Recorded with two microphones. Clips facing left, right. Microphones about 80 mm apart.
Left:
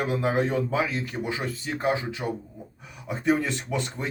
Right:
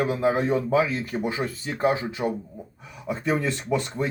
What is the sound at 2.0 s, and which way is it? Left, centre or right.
Speech, right.